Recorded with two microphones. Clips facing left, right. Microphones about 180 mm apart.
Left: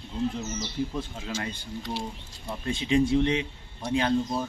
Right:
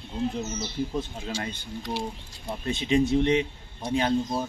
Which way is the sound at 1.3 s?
30° right (ahead or behind).